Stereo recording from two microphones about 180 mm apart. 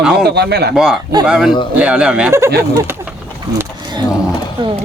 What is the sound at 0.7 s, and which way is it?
Speech, 5° right (ahead or behind).